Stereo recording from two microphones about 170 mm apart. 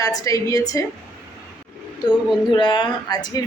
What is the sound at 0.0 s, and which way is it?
Speech, 20° left (ahead or behind).